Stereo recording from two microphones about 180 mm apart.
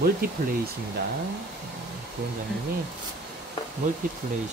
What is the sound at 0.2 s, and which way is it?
Speech, 55° right (ahead or behind).